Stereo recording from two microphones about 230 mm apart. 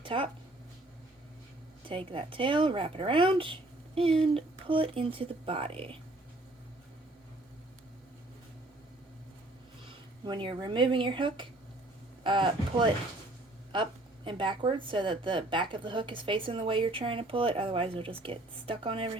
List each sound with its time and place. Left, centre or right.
0.0 s speech: right
1.9 s speech: right
10.2 s speech: centre
14.3 s speech: right